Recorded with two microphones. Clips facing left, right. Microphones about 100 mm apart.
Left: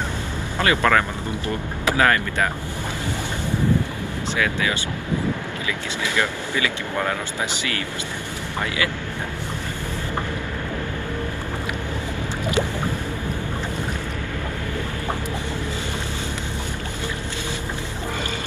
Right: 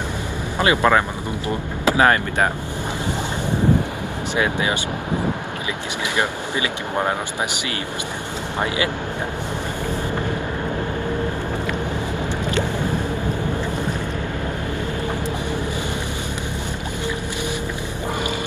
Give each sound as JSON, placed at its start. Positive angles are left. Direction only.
{"t": 0.6, "sound": "speech", "side_deg": -20}
{"t": 4.4, "sound": "speech", "side_deg": -25}
{"t": 6.1, "sound": "speech", "side_deg": -20}
{"t": 8.5, "sound": "speech", "side_deg": -20}